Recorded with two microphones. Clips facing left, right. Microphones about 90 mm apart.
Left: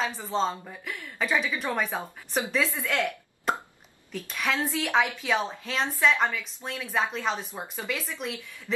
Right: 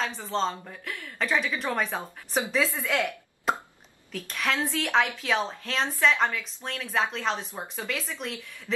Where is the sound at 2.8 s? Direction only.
5° right (ahead or behind).